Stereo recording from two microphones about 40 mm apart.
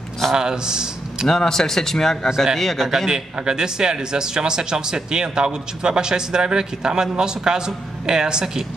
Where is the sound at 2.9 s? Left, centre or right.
Centre.